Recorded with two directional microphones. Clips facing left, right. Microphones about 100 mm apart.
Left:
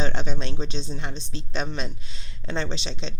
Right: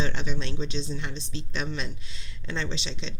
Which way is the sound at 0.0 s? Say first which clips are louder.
Left 2 dB; 40° left (ahead or behind).